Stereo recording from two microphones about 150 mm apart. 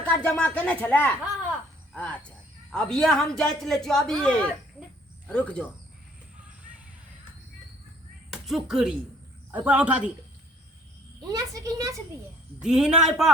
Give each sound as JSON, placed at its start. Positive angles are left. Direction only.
{"t": 0.0, "sound": "a man's voice", "side_deg": 10}
{"t": 8.3, "sound": "a man's voice", "side_deg": 0}
{"t": 11.2, "sound": "a woman's voice", "side_deg": -25}
{"t": 12.5, "sound": "a man's voice", "side_deg": -5}